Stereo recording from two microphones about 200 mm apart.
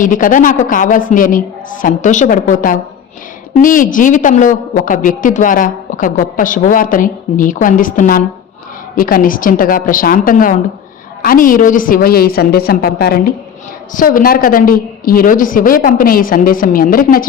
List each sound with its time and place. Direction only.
0.0 s a woman's voice: 40° left (ahead or behind)